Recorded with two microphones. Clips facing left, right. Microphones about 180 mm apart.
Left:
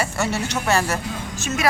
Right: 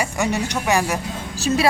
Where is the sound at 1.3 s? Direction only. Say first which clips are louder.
Right 5 dB; 35° right (ahead or behind).